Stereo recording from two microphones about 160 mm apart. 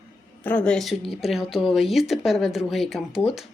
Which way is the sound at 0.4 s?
10° left (ahead or behind).